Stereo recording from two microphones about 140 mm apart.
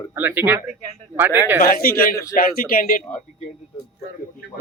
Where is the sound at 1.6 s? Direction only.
90° left.